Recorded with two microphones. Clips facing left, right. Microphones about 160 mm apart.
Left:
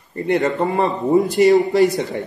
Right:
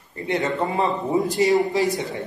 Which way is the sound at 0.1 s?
65° left (ahead or behind).